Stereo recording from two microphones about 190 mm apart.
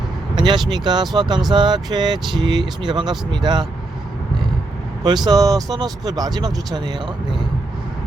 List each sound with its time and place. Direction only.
0.3 s vehicle: 25° right (ahead or behind)
0.7 s speech: 25° right (ahead or behind)
5.0 s speech: 20° right (ahead or behind)